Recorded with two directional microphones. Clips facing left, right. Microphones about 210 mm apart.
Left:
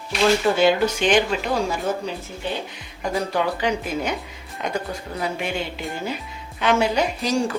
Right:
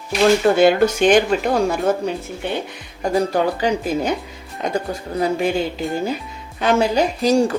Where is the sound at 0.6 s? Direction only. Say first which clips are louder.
Right 5 dB; 50° right (ahead or behind).